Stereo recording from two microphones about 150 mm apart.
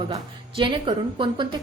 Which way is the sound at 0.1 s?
35° right (ahead or behind).